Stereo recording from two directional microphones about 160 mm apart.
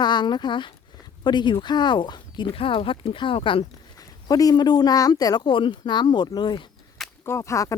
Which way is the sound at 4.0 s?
20° left (ahead or behind).